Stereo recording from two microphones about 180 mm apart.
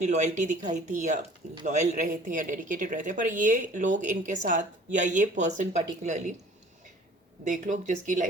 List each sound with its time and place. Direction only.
0.0 s speech: 40° right (ahead or behind)
7.4 s speech: 45° right (ahead or behind)